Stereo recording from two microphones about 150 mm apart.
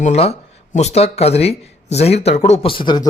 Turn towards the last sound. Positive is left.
turn(degrees=30)  # may be behind; listen again after turning